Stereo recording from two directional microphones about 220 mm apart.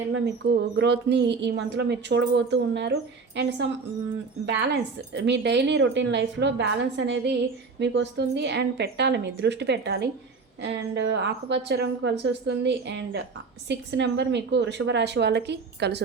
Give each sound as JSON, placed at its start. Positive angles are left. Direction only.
{"t": 0.4, "sound": "speech", "side_deg": -50}